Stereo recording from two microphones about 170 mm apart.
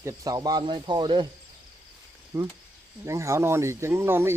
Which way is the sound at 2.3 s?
20° right (ahead or behind).